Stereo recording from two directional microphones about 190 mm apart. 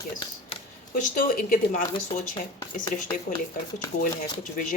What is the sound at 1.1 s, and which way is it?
Speech, 45° left (ahead or behind).